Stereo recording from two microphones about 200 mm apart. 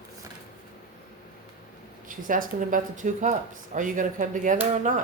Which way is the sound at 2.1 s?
45° right (ahead or behind).